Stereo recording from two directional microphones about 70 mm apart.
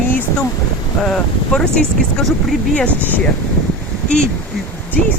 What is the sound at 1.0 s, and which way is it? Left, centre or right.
Speech, centre.